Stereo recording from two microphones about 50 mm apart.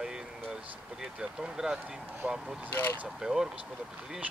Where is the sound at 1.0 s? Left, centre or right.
Centre.